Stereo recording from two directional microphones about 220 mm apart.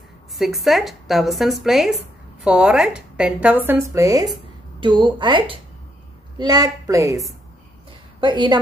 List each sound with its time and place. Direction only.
0.4 s speech: centre (ahead or behind); by 8.5 s 20° right (ahead or behind)